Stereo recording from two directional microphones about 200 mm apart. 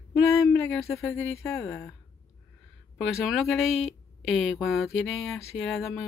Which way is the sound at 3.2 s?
Centre (ahead or behind).